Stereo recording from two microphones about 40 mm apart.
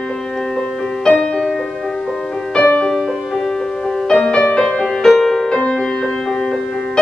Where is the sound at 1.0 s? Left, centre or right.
Left.